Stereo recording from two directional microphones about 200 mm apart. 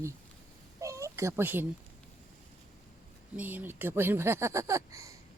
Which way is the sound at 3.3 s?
10° right (ahead or behind).